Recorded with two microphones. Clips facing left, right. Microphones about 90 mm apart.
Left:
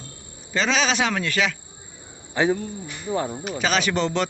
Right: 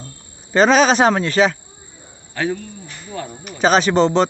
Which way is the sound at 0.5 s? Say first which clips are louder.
Right 9 dB; 45° right (ahead or behind).